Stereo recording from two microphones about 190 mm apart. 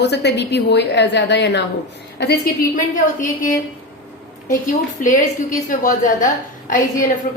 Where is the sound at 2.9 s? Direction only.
45° left (ahead or behind).